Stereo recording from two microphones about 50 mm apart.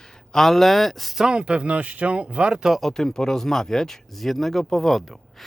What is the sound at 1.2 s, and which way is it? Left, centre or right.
Speech, centre.